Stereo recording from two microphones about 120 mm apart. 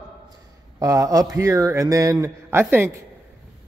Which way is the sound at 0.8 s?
30° right (ahead or behind).